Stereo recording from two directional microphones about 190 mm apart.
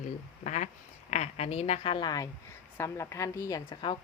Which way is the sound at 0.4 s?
40° left (ahead or behind).